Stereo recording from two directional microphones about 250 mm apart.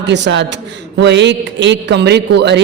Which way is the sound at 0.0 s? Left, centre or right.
Right.